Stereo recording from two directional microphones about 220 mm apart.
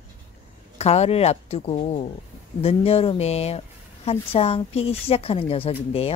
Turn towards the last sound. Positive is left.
turn(degrees=25)  # may be behind; listen again after turning